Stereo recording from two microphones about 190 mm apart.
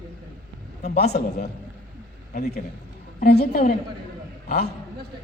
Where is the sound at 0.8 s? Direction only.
55° left (ahead or behind).